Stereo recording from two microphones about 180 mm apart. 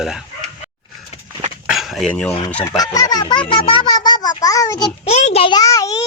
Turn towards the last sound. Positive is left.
turn(degrees=20)  # may be behind; listen again after turning